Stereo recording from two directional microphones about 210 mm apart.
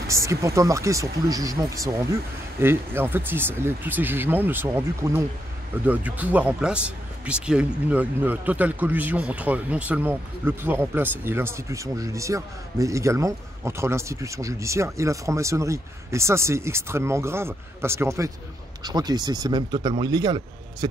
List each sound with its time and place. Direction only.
0.1 s speech: 15° right (ahead or behind)